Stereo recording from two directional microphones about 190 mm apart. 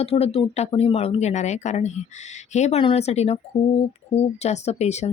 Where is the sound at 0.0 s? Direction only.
30° left (ahead or behind).